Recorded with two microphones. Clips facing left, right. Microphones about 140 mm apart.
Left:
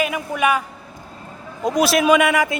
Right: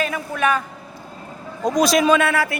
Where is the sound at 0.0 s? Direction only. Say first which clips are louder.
Left 1 dB; 10° left (ahead or behind).